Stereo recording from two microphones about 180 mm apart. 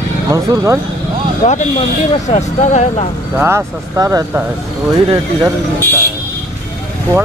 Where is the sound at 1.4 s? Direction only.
35° left (ahead or behind).